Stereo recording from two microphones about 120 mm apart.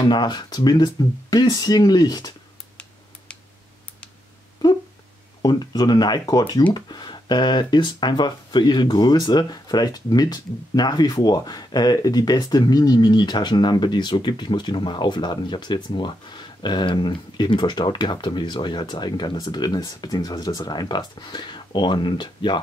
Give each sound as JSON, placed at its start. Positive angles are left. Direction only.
{"t": 0.0, "sound": "speech", "side_deg": 35}
{"t": 5.4, "sound": "speech", "side_deg": 35}